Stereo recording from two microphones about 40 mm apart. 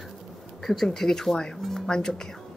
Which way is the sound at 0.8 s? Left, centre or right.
Centre.